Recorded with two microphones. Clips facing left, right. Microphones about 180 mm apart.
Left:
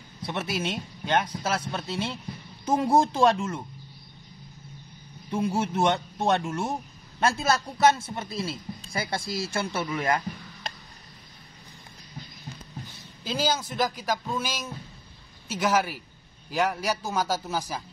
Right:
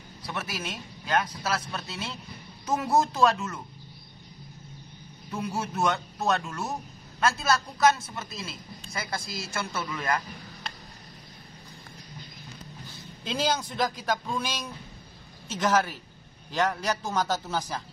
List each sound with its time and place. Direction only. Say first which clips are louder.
0.3 s a man's voice: left 5 dB; 25° left (ahead or behind)
5.3 s a man's voice: left 5 dB; 25° left (ahead or behind)
13.2 s a man's voice: left 1 dB; 5° left (ahead or behind)